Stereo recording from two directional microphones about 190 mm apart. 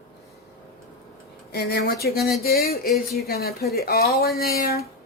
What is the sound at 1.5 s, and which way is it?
Speech, 55° left (ahead or behind).